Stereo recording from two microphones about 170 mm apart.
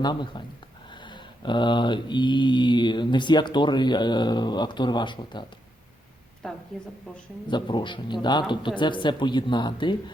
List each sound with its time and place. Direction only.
0.0 s mantra: 25° left (ahead or behind)
6.4 s a woman's voice: 5° left (ahead or behind)
7.4 s mantra: 25° left (ahead or behind)